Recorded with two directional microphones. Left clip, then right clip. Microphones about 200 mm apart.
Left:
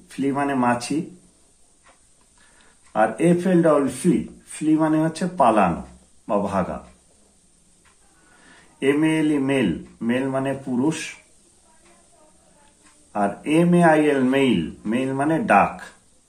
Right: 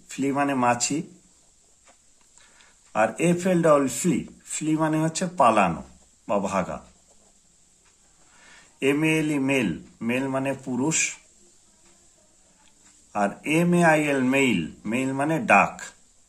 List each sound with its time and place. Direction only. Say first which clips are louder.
0.1 s speech: left 2 dB; 40° right (ahead or behind)
2.9 s speech: left 3 dB; 40° right (ahead or behind)
8.7 s speech: left 3 dB; 40° right (ahead or behind)
13.1 s speech: left 3 dB; 40° right (ahead or behind)